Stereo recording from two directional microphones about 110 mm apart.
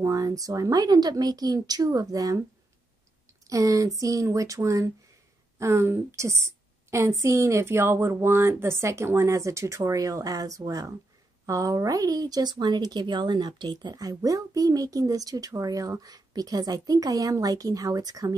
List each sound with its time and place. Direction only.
0.0 s speech: 30° right (ahead or behind)
3.4 s a woman's voice: 30° right (ahead or behind)